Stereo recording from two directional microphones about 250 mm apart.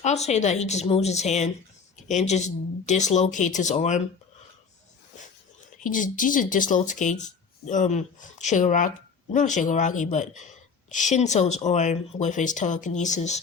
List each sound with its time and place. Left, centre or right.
0.0 s speech: left
5.8 s speech: left